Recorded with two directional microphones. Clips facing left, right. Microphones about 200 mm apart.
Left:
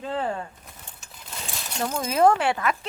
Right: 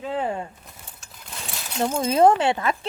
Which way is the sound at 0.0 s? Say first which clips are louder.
Right 2 dB; 10° right (ahead or behind).